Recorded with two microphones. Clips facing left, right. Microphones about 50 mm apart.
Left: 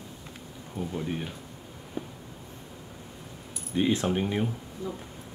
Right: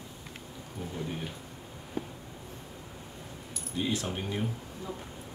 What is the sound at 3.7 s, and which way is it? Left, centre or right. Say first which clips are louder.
Speech: left 7 dB; left.